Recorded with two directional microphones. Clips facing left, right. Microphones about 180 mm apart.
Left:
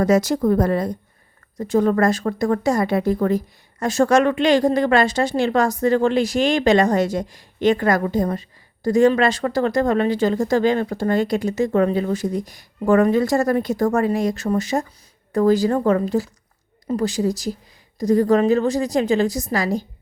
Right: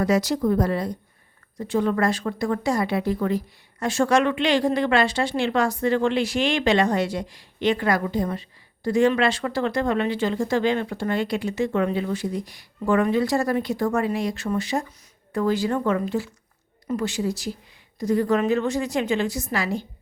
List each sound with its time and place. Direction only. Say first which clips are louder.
0.0 s a woman's voice: left 4 dB; 45° left (ahead or behind)